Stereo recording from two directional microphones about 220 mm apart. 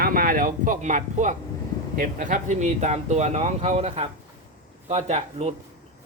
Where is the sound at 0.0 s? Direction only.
40° right (ahead or behind).